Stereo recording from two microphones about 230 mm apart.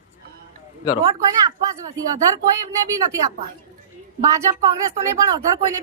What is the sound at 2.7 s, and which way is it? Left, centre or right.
Speech, centre.